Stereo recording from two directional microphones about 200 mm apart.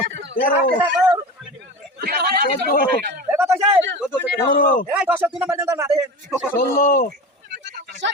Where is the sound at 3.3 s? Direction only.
10° right (ahead or behind).